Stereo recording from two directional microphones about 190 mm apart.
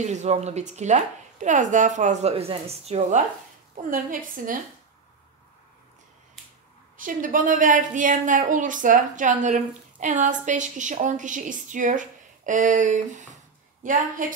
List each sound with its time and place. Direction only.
0.0 s a woman's voice: 35° right (ahead or behind)
7.0 s a woman's voice: 45° right (ahead or behind)